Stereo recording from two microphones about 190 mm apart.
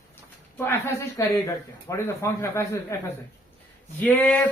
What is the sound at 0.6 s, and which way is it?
Speech, 10° left (ahead or behind).